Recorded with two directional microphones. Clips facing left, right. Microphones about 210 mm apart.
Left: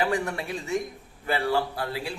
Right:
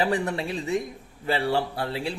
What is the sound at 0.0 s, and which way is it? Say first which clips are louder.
A man's voice: right 2 dB; 25° right (ahead or behind).